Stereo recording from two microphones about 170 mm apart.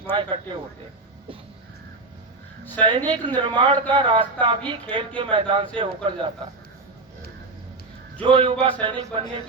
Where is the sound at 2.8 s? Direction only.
25° right (ahead or behind).